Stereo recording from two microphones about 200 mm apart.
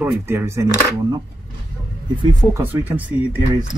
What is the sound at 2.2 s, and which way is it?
Speech, 20° right (ahead or behind).